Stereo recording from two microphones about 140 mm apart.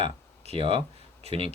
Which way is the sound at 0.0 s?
40° right (ahead or behind).